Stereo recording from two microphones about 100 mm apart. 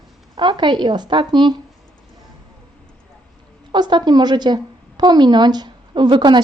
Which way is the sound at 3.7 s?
45° right (ahead or behind).